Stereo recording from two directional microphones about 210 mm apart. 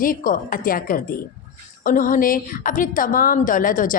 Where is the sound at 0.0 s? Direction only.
40° left (ahead or behind).